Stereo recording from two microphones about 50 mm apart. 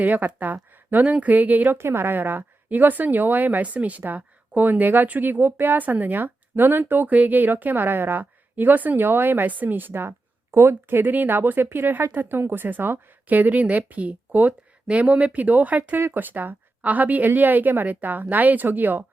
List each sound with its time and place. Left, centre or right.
0.0 s speech: right
1.8 s a woman's voice: right